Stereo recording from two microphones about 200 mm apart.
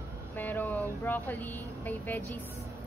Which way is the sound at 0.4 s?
10° left (ahead or behind).